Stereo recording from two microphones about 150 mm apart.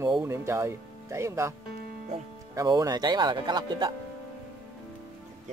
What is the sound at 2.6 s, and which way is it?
Speech, 25° right (ahead or behind).